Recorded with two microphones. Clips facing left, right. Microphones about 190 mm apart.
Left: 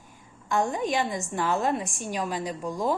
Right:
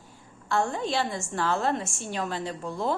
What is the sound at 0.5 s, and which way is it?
A woman's voice, 15° left (ahead or behind).